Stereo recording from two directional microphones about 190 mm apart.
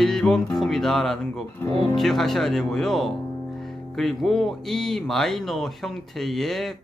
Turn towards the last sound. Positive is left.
turn(degrees=0)  # may be behind; listen again after turning